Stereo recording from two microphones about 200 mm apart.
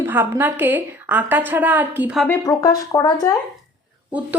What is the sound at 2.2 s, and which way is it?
Speech, 15° left (ahead or behind).